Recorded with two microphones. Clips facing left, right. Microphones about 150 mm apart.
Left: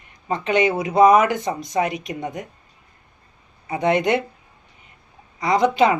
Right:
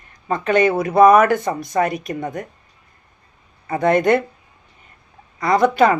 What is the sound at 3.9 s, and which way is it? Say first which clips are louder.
Speech: right 4 dB; 50° right (ahead or behind).